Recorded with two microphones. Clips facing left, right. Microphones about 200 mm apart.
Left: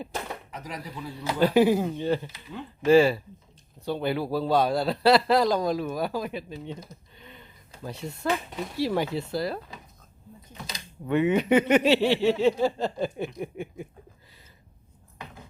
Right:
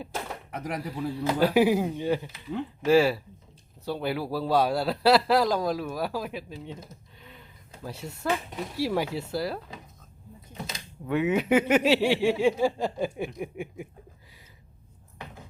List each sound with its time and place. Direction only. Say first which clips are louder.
0.5 s speech: right 5 dB; 60° right (ahead or behind)
1.1 s a man's voice: left 1 dB; 5° right (ahead or behind)
11.0 s speech: left 2 dB; 5° right (ahead or behind)